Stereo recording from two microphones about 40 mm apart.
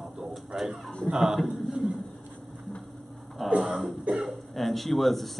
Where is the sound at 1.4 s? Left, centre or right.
Centre.